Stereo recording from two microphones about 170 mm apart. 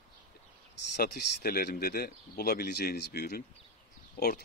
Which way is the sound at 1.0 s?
65° left (ahead or behind).